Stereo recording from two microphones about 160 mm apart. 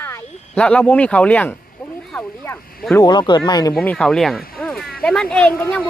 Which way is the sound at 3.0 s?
30° left (ahead or behind).